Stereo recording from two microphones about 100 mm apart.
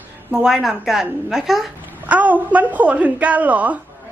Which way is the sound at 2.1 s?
15° right (ahead or behind).